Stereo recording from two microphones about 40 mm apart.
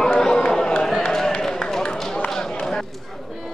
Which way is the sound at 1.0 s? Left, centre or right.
Centre.